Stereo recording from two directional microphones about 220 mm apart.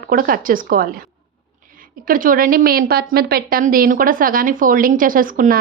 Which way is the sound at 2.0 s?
40° right (ahead or behind).